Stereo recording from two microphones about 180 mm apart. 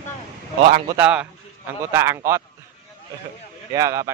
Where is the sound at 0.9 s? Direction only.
5° right (ahead or behind).